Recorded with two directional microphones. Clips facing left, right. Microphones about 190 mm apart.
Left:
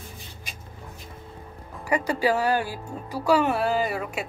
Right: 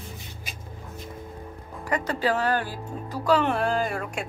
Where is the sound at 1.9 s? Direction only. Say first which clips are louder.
Left 2 dB; 10° left (ahead or behind).